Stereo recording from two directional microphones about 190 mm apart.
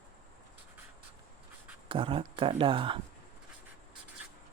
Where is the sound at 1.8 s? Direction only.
25° right (ahead or behind).